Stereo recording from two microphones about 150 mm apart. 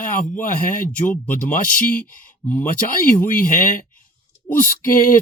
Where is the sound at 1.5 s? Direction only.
65° left (ahead or behind).